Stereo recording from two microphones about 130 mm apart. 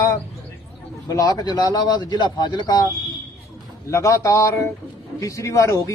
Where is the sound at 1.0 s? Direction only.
30° left (ahead or behind).